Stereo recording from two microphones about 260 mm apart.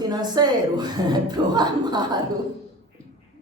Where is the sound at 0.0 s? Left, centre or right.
Centre.